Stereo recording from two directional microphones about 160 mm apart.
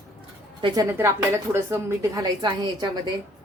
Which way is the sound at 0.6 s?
25° right (ahead or behind).